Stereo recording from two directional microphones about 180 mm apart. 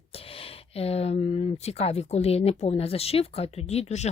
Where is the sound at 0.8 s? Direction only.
35° left (ahead or behind).